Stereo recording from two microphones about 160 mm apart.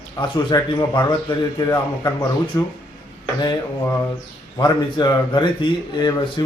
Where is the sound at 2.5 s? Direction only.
20° left (ahead or behind).